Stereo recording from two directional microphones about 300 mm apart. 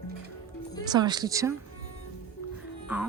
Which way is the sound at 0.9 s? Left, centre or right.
Centre.